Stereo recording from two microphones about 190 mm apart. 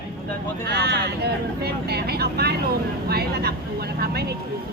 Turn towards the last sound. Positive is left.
turn(degrees=-55)  # may be behind; listen again after turning